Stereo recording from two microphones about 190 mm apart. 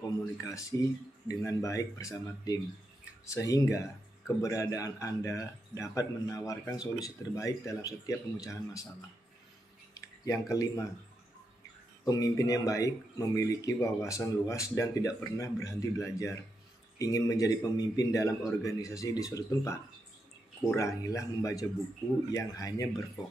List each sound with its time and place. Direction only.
0.0 s speech: 15° left (ahead or behind)
9.9 s speech: 15° left (ahead or behind)
12.0 s speech: 20° left (ahead or behind)